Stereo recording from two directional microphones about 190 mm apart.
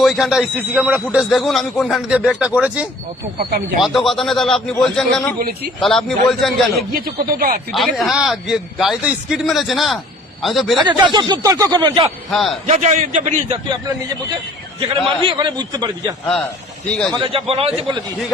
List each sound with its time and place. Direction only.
0.0 s a man's voice: centre (ahead or behind)
6.9 s speech: 50° right (ahead or behind)
7.7 s a man's voice: centre (ahead or behind)
10.8 s a man's voice: 25° right (ahead or behind)
12.3 s a man's voice: centre (ahead or behind)
12.6 s a man's voice: 35° right (ahead or behind)
14.8 s a man's voice: 30° right (ahead or behind)
16.9 s a man's voice: 5° left (ahead or behind)
17.2 s a man's voice: 30° right (ahead or behind)